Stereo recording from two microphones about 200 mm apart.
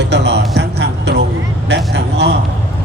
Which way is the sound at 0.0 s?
60° right (ahead or behind).